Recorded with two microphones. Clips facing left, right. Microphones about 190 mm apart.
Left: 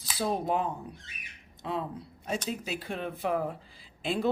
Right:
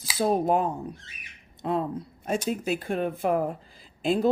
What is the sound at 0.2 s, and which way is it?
A woman's voice, 45° right (ahead or behind).